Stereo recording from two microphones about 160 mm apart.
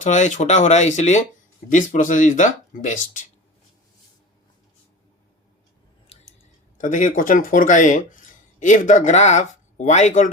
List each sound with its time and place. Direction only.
0.0 s speech: 50° left (ahead or behind)
6.7 s speech: 55° left (ahead or behind)